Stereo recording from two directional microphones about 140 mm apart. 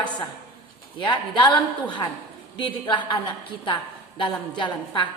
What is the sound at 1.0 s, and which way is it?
Speech, 35° left (ahead or behind).